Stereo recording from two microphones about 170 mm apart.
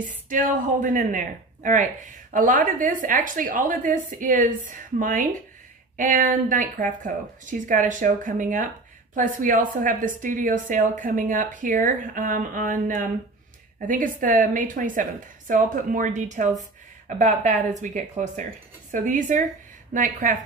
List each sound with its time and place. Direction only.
0.3 s a woman's voice: 50° right (ahead or behind)